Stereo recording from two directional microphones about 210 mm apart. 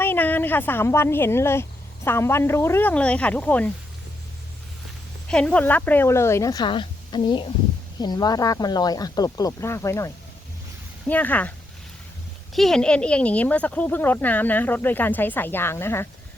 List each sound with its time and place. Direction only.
0.0 s a woman's voice: 10° left (ahead or behind)
5.3 s speech: 5° left (ahead or behind)
11.1 s speech: 10° left (ahead or behind)
12.5 s speech: centre (ahead or behind)